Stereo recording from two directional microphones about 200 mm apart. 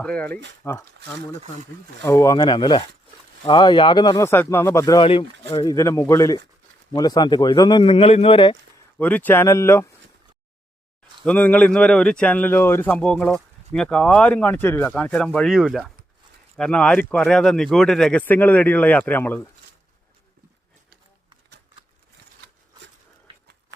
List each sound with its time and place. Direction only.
0.0 s speech: 5° left (ahead or behind)
2.0 s speech: 15° left (ahead or behind)
9.0 s speech: 10° left (ahead or behind)
11.3 s speech: 10° left (ahead or behind)